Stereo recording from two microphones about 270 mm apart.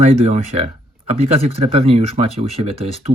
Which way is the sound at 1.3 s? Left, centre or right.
Right.